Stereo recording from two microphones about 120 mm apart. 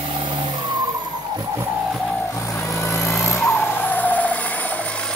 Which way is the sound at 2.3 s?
25° left (ahead or behind).